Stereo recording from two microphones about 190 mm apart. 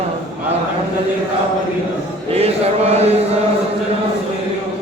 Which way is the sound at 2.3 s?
35° right (ahead or behind).